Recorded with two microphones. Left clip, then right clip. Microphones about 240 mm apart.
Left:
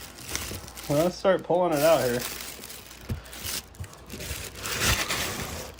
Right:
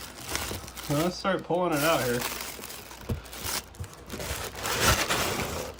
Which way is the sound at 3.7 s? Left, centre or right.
Centre.